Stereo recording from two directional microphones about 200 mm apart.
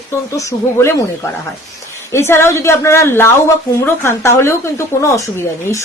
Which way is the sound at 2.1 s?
10° left (ahead or behind).